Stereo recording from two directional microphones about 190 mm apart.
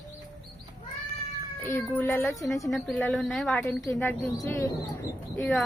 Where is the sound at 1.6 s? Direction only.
10° left (ahead or behind).